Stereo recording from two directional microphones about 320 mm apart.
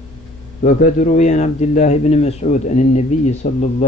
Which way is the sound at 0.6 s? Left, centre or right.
Left.